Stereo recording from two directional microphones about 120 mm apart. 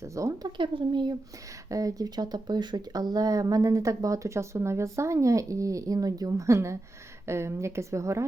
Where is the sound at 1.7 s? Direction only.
30° right (ahead or behind).